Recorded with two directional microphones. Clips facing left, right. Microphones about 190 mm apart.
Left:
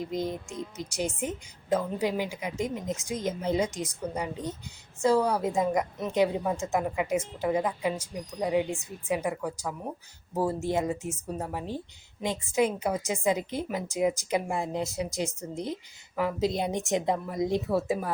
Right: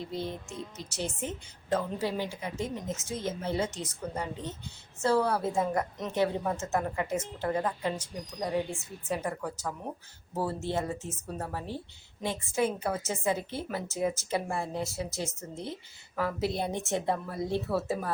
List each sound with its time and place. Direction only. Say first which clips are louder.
0.0 s a woman's voice: left 4 dB; 15° left (ahead or behind)